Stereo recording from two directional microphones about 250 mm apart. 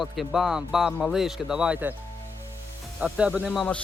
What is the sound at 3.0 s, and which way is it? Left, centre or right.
Speech, centre.